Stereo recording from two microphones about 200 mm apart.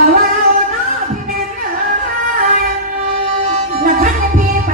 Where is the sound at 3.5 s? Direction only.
40° right (ahead or behind).